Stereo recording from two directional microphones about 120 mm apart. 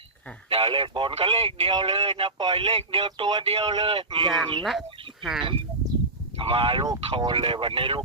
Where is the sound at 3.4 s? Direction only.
55° right (ahead or behind).